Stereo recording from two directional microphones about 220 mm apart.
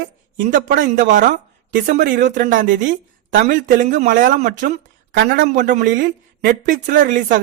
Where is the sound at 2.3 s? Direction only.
35° right (ahead or behind).